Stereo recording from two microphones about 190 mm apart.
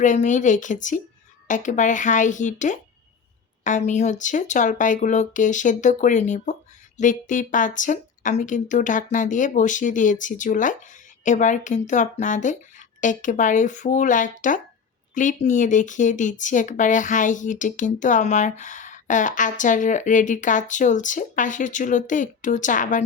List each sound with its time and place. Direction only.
0.0 s a woman's voice: 40° left (ahead or behind)